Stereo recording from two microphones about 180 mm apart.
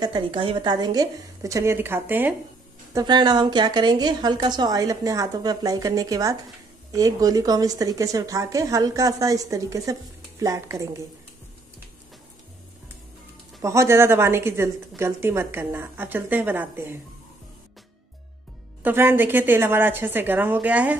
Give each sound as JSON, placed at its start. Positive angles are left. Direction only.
{"t": 0.0, "sound": "a woman's voice", "side_deg": -25}
{"t": 2.9, "sound": "a woman's voice", "side_deg": -25}
{"t": 13.6, "sound": "a woman's voice", "side_deg": -15}
{"t": 18.8, "sound": "a woman's voice", "side_deg": -10}